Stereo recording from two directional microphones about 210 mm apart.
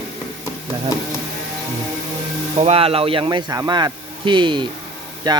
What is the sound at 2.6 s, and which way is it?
Speech, 25° right (ahead or behind).